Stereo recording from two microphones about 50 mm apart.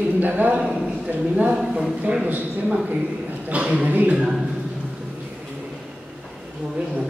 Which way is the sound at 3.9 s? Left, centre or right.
Right.